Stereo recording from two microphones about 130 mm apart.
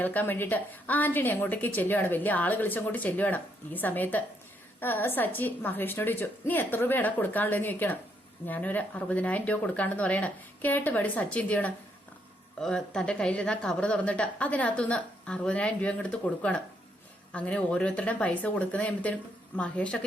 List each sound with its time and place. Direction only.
0.0 s a woman's voice: 15° left (ahead or behind)